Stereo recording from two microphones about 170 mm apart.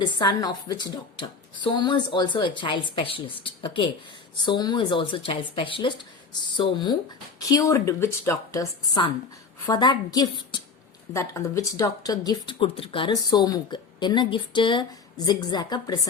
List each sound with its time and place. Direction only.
0.2 s speech: 25° left (ahead or behind)
9.6 s speech: 25° left (ahead or behind)